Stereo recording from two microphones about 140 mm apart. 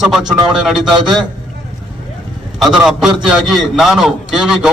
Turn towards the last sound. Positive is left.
turn(degrees=-5)  # may be behind; listen again after turning